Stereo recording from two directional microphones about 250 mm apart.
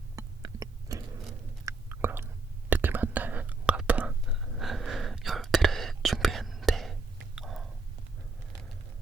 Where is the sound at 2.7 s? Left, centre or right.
Centre.